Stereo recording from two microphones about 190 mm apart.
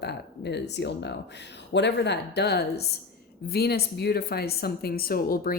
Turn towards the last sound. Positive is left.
turn(degrees=50)  # may be behind; listen again after turning